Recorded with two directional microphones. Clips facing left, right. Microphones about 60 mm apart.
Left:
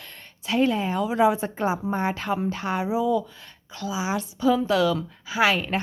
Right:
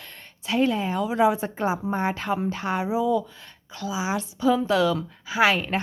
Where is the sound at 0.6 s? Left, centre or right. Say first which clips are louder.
Left 1 dB; centre.